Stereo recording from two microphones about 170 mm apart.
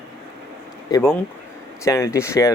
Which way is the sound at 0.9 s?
15° left (ahead or behind).